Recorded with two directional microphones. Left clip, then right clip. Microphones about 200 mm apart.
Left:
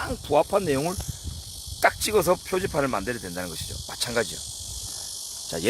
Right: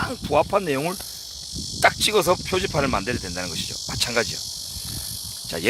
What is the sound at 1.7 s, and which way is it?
Cricket, 10° right (ahead or behind).